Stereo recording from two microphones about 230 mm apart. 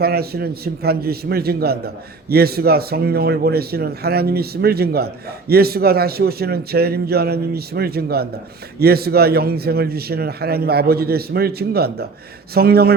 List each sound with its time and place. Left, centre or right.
0.0 s a man's voice: right